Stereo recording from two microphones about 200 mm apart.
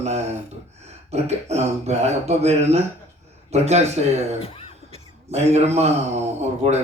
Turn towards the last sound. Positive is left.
turn(degrees=-35)  # may be behind; listen again after turning